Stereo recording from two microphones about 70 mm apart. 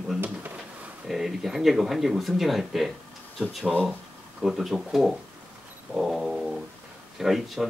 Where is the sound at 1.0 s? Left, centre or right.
Centre.